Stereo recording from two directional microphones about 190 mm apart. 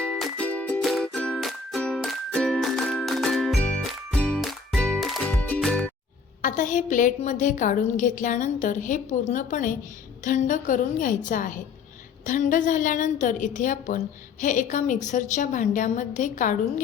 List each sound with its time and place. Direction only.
0.0 s music: centre (ahead or behind)
6.4 s a woman's voice: 45° left (ahead or behind)